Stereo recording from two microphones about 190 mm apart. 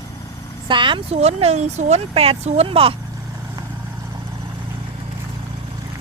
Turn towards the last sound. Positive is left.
turn(degrees=-20)  # may be behind; listen again after turning